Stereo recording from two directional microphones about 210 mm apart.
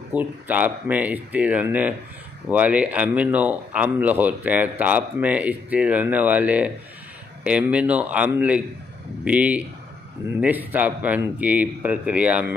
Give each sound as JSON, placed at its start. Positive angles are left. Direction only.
{"t": 0.1, "sound": "speech", "side_deg": -5}